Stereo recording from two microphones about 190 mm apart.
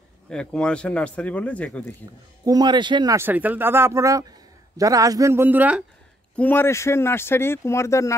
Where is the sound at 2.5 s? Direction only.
25° right (ahead or behind).